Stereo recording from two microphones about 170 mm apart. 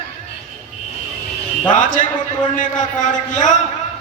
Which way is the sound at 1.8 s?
50° left (ahead or behind).